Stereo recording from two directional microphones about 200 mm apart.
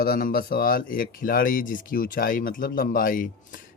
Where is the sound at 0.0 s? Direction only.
45° left (ahead or behind).